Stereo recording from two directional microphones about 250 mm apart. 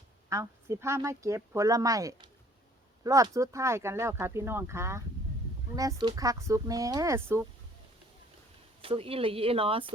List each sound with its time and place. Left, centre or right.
0.3 s speech: centre
8.8 s speech: right